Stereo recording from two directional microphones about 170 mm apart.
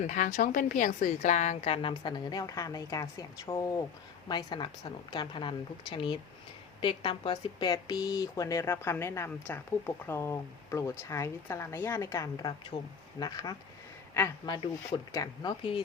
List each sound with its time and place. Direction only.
0.0 s a woman's voice: 45° left (ahead or behind); by 15.8 s 30° left (ahead or behind)